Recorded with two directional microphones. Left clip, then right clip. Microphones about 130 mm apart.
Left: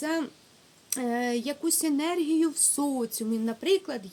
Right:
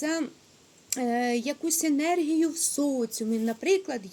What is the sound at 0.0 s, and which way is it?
Speech, 10° left (ahead or behind).